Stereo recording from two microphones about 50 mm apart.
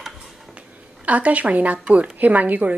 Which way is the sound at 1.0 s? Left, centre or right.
Right.